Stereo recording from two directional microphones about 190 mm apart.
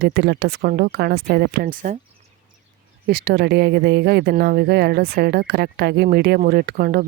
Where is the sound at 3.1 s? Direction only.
55° right (ahead or behind).